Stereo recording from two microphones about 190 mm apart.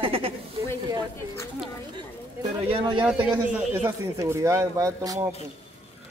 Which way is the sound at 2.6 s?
25° right (ahead or behind).